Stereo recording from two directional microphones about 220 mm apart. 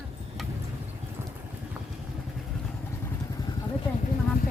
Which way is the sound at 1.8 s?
10° right (ahead or behind).